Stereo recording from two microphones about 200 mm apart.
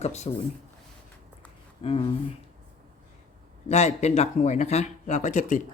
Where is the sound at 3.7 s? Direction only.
35° left (ahead or behind).